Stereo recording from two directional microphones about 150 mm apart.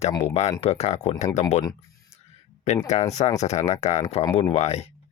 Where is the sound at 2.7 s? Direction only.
50° left (ahead or behind).